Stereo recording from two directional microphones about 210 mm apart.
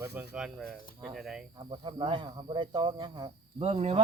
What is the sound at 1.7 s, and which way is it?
Speech, 25° right (ahead or behind).